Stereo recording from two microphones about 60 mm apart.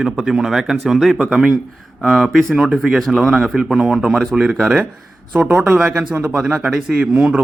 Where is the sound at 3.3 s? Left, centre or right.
Centre.